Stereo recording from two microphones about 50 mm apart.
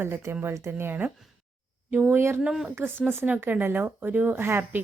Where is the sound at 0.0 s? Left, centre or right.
Right.